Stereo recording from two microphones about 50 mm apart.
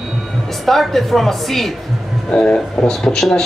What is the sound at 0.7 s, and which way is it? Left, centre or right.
Speech, centre.